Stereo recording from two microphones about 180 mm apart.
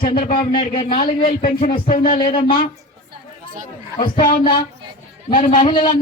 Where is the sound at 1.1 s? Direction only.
50° left (ahead or behind).